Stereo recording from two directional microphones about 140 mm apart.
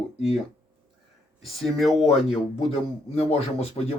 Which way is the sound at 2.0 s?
45° left (ahead or behind).